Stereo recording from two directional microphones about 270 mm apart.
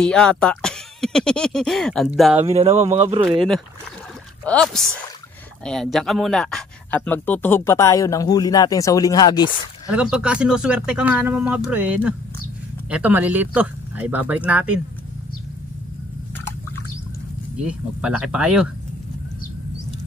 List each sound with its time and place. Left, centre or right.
0.0 s speech: centre
2.4 s speech: right
3.3 s speech: centre
9.8 s speech: centre
17.6 s speech: centre